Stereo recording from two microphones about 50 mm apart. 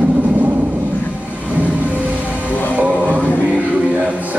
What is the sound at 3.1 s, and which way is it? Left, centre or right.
Choir, left.